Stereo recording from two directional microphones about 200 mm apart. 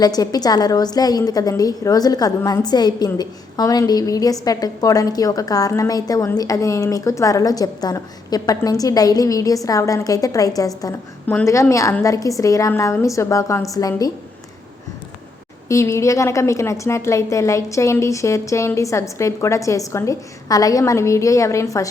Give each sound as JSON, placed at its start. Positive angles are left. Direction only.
{"t": 0.0, "sound": "a woman's voice", "side_deg": 20}
{"t": 15.7, "sound": "a woman's voice", "side_deg": 15}